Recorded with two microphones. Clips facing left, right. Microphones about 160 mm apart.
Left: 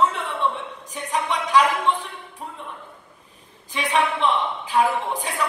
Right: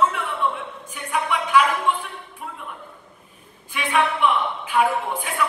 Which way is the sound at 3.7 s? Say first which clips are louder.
Even; 35° left (ahead or behind).